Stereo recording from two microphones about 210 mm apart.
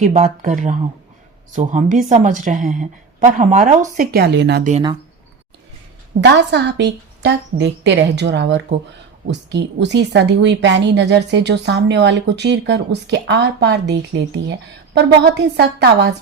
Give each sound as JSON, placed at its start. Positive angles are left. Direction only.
{"t": 0.0, "sound": "a woman's voice", "side_deg": -35}
{"t": 6.2, "sound": "a woman's voice", "side_deg": -55}